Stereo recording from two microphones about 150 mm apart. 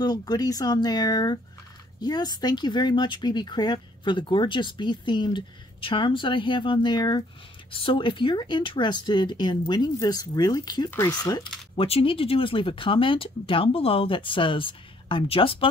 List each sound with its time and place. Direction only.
0.0 s speech: 25° left (ahead or behind)
11.7 s speech: 35° left (ahead or behind)